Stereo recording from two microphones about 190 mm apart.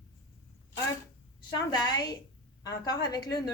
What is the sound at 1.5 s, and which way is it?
A woman's voice, 20° left (ahead or behind).